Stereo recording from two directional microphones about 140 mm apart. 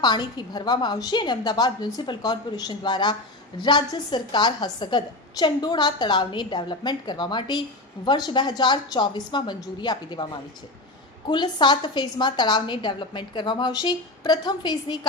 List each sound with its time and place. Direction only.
0.0 s a woman's voice: 30° left (ahead or behind)
11.3 s a woman's voice: 35° left (ahead or behind)